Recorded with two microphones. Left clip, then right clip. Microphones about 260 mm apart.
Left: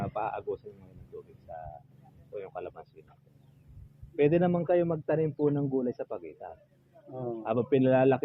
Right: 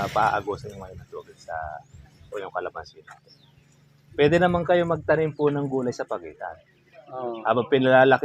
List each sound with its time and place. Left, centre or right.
0.0 s a man's voice: right
2.3 s a man's voice: centre
4.2 s a man's voice: centre
7.4 s a man's voice: centre